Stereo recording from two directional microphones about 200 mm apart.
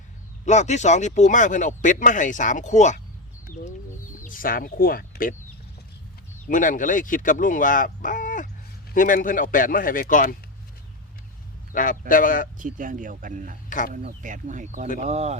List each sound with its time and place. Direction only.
0.4 s speech: 35° left (ahead or behind)
6.5 s a man's voice: 40° left (ahead or behind)
11.7 s a man's voice: 40° left (ahead or behind)
12.5 s speech: 40° right (ahead or behind)
13.7 s speech: 40° left (ahead or behind)
13.9 s speech: 40° right (ahead or behind)